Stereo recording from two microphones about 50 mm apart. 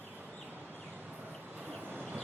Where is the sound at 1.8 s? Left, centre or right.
Right.